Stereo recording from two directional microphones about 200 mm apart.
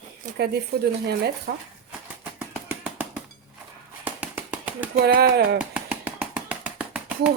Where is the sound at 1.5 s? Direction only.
50° right (ahead or behind).